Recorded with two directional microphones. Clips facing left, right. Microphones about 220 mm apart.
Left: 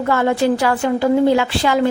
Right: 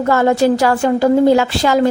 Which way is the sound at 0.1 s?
40° right (ahead or behind).